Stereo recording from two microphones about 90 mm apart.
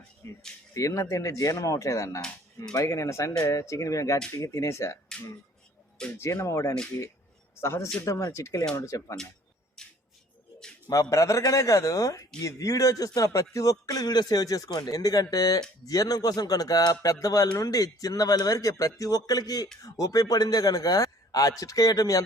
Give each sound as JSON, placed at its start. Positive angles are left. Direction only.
{"t": 0.2, "sound": "speech", "side_deg": 35}
{"t": 6.1, "sound": "a man's voice", "side_deg": 30}
{"t": 9.8, "sound": "a sound", "side_deg": 5}
{"t": 10.8, "sound": "speech", "side_deg": 40}